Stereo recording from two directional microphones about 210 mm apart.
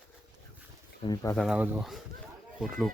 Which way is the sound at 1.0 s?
20° left (ahead or behind).